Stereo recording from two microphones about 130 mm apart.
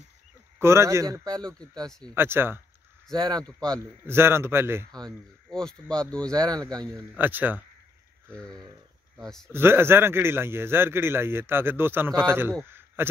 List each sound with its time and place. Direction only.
0.6 s a man's voice: 20° right (ahead or behind)
1.4 s speech: 5° left (ahead or behind)
2.1 s a man's voice: 15° right (ahead or behind)
3.2 s speech: 35° right (ahead or behind)
4.1 s a man's voice: 20° right (ahead or behind)
5.5 s speech: 5° left (ahead or behind)
6.3 s speech: 30° right (ahead or behind)
7.2 s a man's voice: 15° right (ahead or behind)
9.5 s a man's voice: 20° right (ahead or behind)
12.7 s a sound: 15° right (ahead or behind)